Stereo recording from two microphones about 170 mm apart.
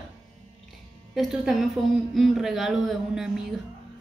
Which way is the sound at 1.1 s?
Centre (ahead or behind).